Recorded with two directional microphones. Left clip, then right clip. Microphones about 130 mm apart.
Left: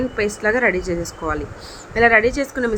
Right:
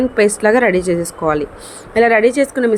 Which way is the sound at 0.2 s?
30° right (ahead or behind).